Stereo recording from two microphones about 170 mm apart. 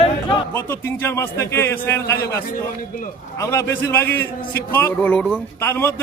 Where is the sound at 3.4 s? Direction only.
20° left (ahead or behind).